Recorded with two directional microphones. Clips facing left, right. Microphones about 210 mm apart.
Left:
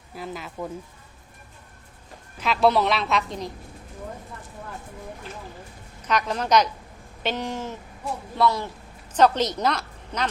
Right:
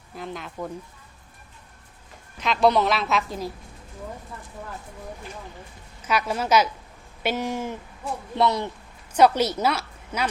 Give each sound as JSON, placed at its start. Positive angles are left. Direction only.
{"t": 0.2, "sound": "a woman's voice", "side_deg": 5}
{"t": 2.4, "sound": "a woman's voice", "side_deg": 5}
{"t": 6.1, "sound": "a woman's voice", "side_deg": -10}
{"t": 9.1, "sound": "a woman's voice", "side_deg": -10}